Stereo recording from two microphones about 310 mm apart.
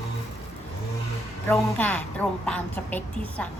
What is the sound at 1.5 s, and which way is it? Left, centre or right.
A woman's voice, centre.